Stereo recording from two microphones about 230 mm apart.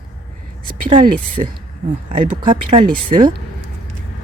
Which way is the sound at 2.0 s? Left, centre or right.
Right.